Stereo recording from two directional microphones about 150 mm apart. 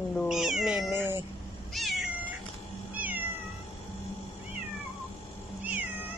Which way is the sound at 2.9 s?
10° right (ahead or behind).